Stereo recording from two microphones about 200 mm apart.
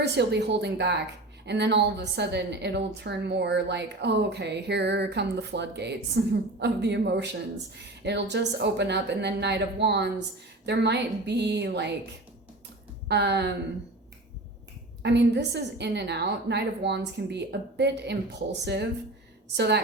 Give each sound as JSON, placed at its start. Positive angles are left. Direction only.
{"t": 0.0, "sound": "a woman's voice", "side_deg": -55}
{"t": 13.1, "sound": "a woman's voice", "side_deg": -60}
{"t": 15.0, "sound": "a woman's voice", "side_deg": -60}